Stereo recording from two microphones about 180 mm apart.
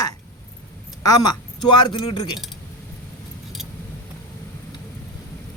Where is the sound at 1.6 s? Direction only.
25° left (ahead or behind).